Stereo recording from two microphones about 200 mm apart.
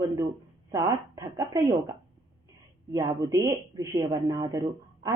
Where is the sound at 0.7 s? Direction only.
15° right (ahead or behind).